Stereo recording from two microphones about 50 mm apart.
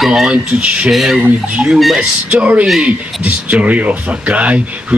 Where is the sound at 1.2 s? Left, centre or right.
Right.